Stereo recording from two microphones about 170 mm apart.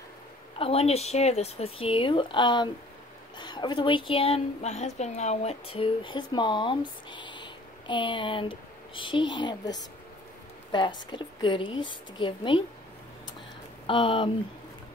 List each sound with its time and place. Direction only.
0.6 s a woman's voice: 35° left (ahead or behind)
13.8 s a woman's voice: 30° left (ahead or behind)